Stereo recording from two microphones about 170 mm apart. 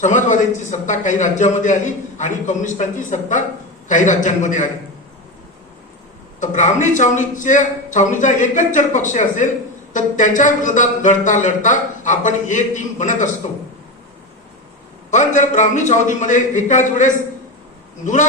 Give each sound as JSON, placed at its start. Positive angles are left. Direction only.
{"t": 0.0, "sound": "a man's voice", "side_deg": 45}
{"t": 6.4, "sound": "a man's voice", "side_deg": 45}
{"t": 15.1, "sound": "a man's voice", "side_deg": 45}